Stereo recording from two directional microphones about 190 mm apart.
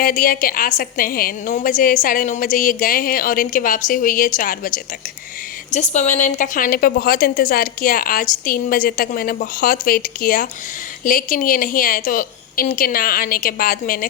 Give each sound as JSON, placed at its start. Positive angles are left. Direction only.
{"t": 0.0, "sound": "a woman's voice", "side_deg": 50}